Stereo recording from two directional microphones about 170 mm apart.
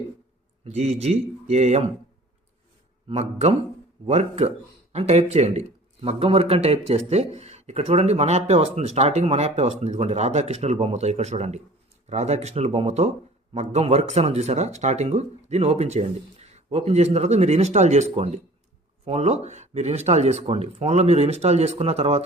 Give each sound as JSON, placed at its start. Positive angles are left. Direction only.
{"t": 0.6, "sound": "speech", "side_deg": -40}
{"t": 3.1, "sound": "speech", "side_deg": -40}